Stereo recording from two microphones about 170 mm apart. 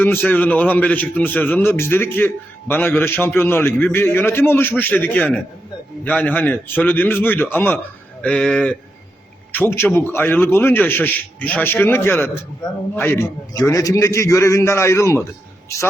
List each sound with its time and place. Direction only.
0.0 s a man's voice: 10° left (ahead or behind)